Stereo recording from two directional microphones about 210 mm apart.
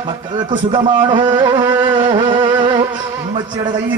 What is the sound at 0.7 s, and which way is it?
Music, 25° right (ahead or behind).